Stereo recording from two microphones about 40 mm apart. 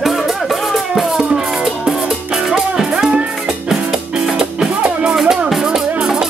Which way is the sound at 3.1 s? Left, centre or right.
Right.